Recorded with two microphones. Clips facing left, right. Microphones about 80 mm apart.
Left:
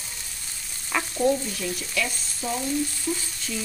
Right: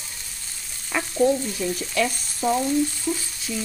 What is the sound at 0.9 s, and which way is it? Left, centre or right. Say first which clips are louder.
Frying: right 3 dB; centre.